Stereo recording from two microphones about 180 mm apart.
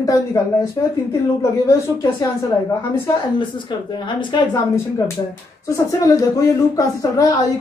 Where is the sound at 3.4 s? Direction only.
25° left (ahead or behind).